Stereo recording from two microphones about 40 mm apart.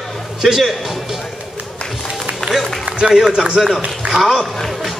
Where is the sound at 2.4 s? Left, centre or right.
Centre.